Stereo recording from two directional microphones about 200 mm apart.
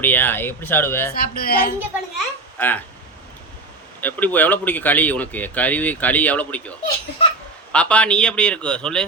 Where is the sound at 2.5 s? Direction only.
10° left (ahead or behind).